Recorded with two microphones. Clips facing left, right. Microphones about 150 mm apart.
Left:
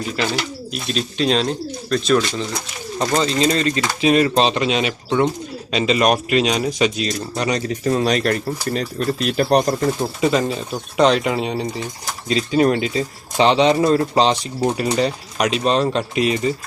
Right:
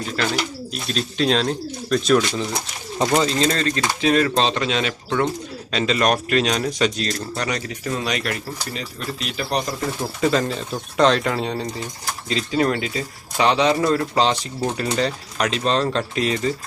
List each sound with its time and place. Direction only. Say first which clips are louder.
0.2 s speech: right 1 dB; 5° left (ahead or behind)
3.3 s speech: left 3 dB; 10° left (ahead or behind)
7.4 s speech: left 6 dB; 25° left (ahead or behind)
7.7 s speech: left 7 dB; 35° left (ahead or behind)
10.0 s speech: left 2 dB; 15° left (ahead or behind)